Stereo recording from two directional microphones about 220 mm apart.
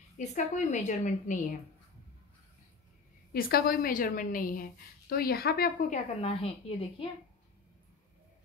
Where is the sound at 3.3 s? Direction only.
45° left (ahead or behind).